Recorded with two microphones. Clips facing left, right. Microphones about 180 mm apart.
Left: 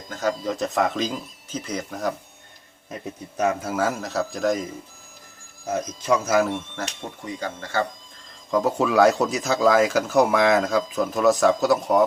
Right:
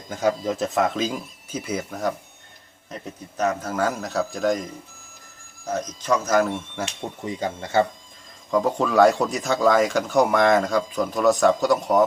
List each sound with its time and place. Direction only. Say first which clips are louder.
0.1 s speech: right 3 dB; 10° right (ahead or behind)
2.9 s speech: left 2 dB; 10° left (ahead or behind)
7.3 s speech: right 3 dB; 20° right (ahead or behind)
8.4 s speech: even; 5° left (ahead or behind)